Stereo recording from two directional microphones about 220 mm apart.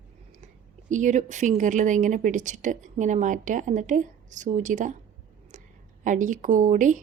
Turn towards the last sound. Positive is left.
turn(degrees=-35)  # may be behind; listen again after turning